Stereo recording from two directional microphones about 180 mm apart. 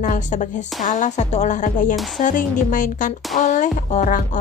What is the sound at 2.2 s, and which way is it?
Speech, 50° left (ahead or behind).